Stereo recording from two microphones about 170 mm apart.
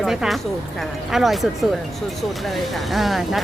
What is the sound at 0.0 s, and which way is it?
Speech, centre (ahead or behind).